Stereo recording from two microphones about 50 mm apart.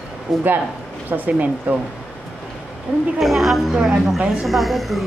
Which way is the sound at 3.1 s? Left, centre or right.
Centre.